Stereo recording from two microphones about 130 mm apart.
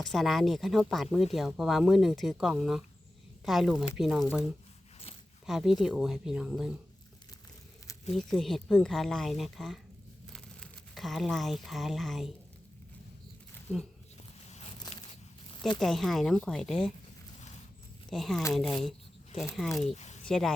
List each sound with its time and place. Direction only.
0.0 s speech: centre (ahead or behind)
5.5 s speech: 5° right (ahead or behind)
8.1 s speech: 5° left (ahead or behind)
13.7 s speech: 10° left (ahead or behind)
14.4 s a sound: 55° left (ahead or behind)
15.8 s speech: centre (ahead or behind)
18.1 s speech: centre (ahead or behind)
19.9 s a sound: 60° left (ahead or behind)
20.2 s speech: 5° left (ahead or behind)